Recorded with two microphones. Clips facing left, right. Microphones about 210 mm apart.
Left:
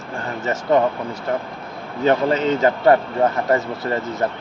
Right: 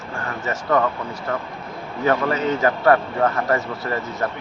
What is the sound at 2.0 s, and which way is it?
Speech, 25° left (ahead or behind).